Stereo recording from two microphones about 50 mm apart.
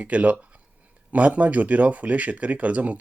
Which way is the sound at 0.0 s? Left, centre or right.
Right.